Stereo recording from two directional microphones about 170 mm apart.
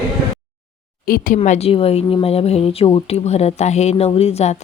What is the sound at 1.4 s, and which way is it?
Speech, 35° left (ahead or behind).